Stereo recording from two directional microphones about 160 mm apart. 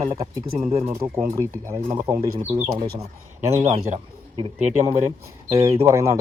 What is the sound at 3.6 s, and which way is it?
Speech, 40° right (ahead or behind).